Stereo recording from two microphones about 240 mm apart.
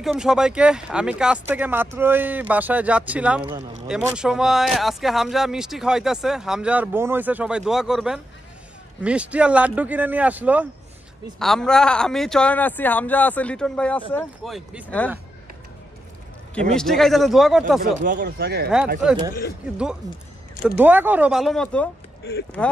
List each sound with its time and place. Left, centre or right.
0.0 s speech: centre
16.7 s speech: centre
18.0 s speech: right
20.6 s speech: centre